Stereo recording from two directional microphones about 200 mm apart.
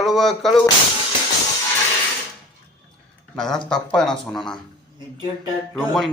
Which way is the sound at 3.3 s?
Centre (ahead or behind).